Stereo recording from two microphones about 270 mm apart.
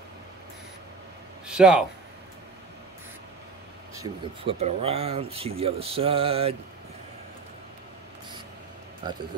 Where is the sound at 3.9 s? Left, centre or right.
Right.